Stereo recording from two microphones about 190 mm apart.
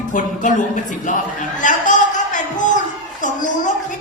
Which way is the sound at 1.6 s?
40° left (ahead or behind).